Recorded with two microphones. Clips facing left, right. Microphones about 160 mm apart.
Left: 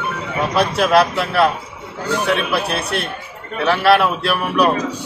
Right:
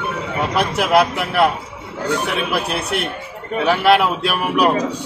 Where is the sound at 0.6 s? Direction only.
15° right (ahead or behind).